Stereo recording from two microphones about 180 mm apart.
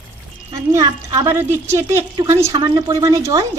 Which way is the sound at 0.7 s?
20° right (ahead or behind).